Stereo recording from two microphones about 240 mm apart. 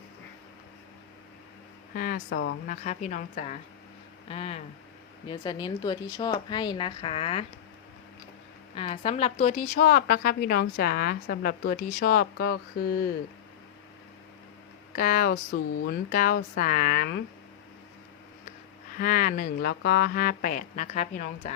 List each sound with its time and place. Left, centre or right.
2.0 s speech: left
2.6 s a woman's voice: left
8.7 s a woman's voice: left
14.9 s a woman's voice: left
18.9 s a woman's voice: left